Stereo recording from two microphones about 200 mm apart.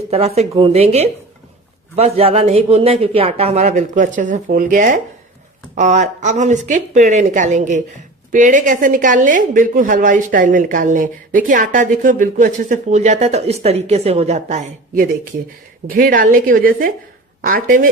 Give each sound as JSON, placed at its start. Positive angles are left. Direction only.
{"t": 0.1, "sound": "a woman's voice", "side_deg": -30}